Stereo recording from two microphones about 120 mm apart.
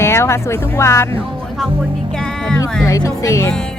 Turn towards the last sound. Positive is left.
turn(degrees=25)  # may be behind; listen again after turning